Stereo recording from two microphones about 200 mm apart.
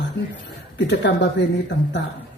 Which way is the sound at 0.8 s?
60° left (ahead or behind).